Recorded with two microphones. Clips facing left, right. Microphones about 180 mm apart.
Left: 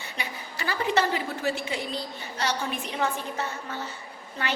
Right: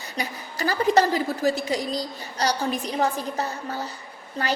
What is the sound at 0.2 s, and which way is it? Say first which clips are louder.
A woman's voice: right 7 dB; 40° right (ahead or behind).